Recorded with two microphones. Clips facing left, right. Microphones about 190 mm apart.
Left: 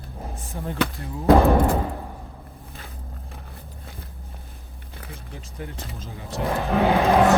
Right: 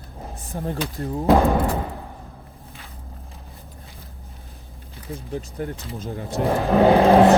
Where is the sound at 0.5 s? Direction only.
40° right (ahead or behind).